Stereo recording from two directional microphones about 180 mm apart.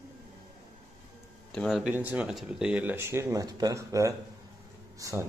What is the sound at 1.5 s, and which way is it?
Speech, centre (ahead or behind).